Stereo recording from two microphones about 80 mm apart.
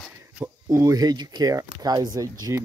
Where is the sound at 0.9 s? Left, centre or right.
Right.